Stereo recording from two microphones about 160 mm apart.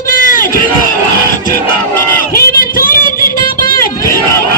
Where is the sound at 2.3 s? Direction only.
65° left (ahead or behind).